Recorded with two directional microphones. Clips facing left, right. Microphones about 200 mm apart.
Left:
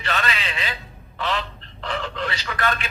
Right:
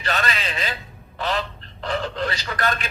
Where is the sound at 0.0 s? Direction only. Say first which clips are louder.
Right 1 dB; 40° right (ahead or behind).